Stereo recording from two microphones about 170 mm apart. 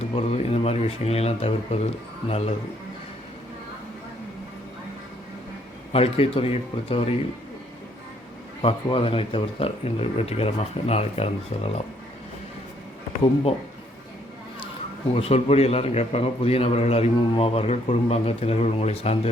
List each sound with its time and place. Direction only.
0.2 s a man's voice: 35° left (ahead or behind)
5.9 s a man's voice: 35° left (ahead or behind)
8.6 s a man's voice: 30° left (ahead or behind)
15.1 s a man's voice: 35° left (ahead or behind)